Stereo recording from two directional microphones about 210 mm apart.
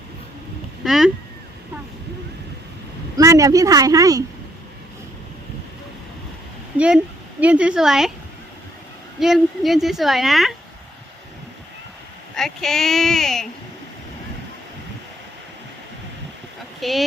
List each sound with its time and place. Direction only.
0.9 s a sound: centre (ahead or behind)
3.2 s a woman's voice: 15° right (ahead or behind)
6.7 s a woman's voice: 5° right (ahead or behind)
9.2 s a woman's voice: centre (ahead or behind)
12.4 s a woman's voice: centre (ahead or behind)
16.8 s a woman's voice: centre (ahead or behind)